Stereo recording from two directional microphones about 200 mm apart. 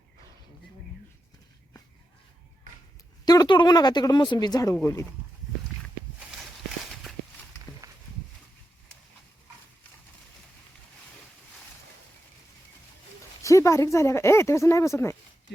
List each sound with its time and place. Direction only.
3.2 s speech: 20° left (ahead or behind)
7.8 s walk: 15° right (ahead or behind)
13.4 s speech: 15° left (ahead or behind)